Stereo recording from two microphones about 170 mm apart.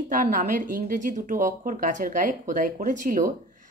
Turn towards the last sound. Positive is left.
turn(degrees=-50)  # may be behind; listen again after turning